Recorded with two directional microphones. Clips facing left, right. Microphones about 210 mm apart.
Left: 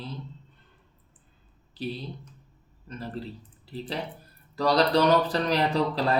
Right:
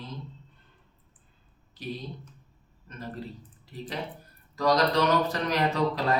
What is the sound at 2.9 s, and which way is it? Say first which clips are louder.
Speech: left 2 dB; 30° left (ahead or behind).